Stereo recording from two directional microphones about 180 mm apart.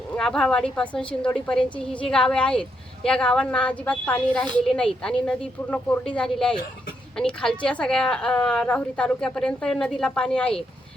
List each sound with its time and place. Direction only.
0.1 s a woman's voice: 5° left (ahead or behind)